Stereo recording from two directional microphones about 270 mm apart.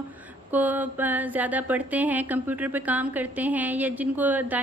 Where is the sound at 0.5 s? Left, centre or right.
Centre.